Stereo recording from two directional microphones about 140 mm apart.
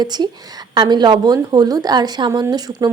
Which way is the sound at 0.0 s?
30° right (ahead or behind).